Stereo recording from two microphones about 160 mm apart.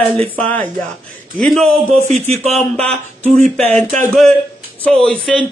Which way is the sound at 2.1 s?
45° right (ahead or behind).